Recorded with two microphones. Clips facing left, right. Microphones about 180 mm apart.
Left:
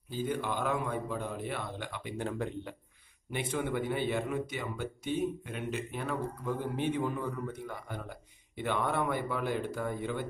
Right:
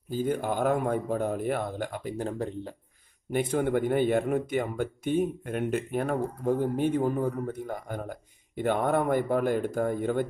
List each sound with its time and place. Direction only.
0.1 s speech: 45° right (ahead or behind)